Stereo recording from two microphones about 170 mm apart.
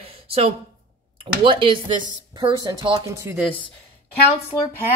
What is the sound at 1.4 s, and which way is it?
Speech, 30° right (ahead or behind).